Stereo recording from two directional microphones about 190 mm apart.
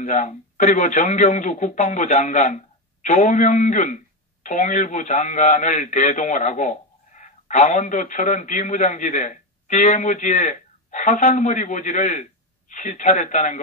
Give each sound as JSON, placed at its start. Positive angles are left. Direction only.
{"t": 0.0, "sound": "speech", "side_deg": 40}